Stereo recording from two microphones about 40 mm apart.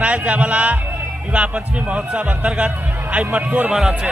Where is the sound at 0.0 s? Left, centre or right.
Right.